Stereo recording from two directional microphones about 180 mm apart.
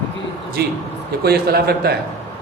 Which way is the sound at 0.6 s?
60° right (ahead or behind).